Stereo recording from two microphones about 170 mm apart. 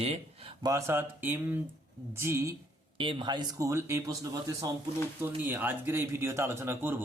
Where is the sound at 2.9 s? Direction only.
30° right (ahead or behind).